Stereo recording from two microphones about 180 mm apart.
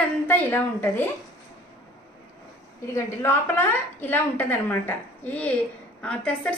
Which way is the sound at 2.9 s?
15° left (ahead or behind).